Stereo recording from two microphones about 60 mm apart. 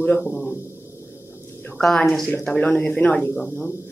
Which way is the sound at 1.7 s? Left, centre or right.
Centre.